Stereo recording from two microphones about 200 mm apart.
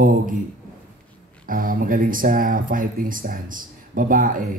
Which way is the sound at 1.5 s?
45° right (ahead or behind).